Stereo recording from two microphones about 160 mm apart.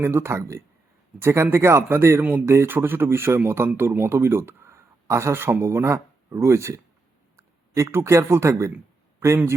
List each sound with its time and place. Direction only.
0.0 s speech: 15° right (ahead or behind)